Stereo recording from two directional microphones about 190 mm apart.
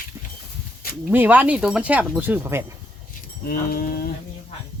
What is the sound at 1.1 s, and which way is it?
Speech, 10° right (ahead or behind).